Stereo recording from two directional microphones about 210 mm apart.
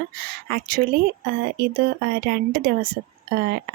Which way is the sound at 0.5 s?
45° right (ahead or behind).